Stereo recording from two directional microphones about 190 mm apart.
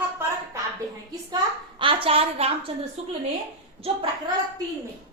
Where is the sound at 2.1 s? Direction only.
30° right (ahead or behind).